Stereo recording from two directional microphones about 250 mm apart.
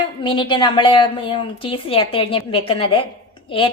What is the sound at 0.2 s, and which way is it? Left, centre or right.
A woman's voice, centre.